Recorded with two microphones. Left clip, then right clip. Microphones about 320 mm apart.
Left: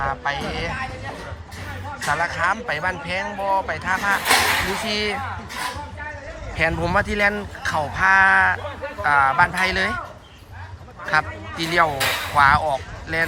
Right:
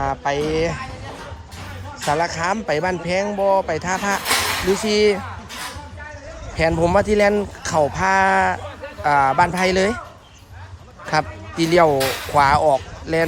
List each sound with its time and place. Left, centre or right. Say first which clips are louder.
0.0 s speech: right 2 dB; right
0.3 s speech: right 6 dB; centre
0.7 s a sound: left 1 dB; centre
2.0 s speech: right 1 dB; right
4.2 s speech: left 3 dB; centre
4.9 s speech: right 7 dB; right
6.6 s speech: right 3 dB; centre
11.0 s speech: even; right
11.9 s speech: right 1 dB; centre
12.3 s speech: right 2 dB; right